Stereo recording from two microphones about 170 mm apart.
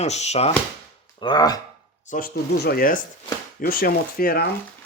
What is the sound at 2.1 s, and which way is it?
Speech, 50° left (ahead or behind).